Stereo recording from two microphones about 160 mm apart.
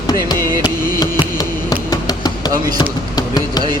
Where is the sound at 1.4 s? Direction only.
25° left (ahead or behind).